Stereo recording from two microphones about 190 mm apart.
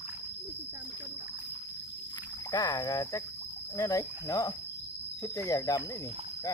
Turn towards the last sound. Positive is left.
turn(degrees=20)  # may be behind; listen again after turning